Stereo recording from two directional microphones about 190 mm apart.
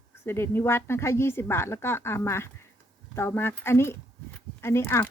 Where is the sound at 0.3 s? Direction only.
10° left (ahead or behind).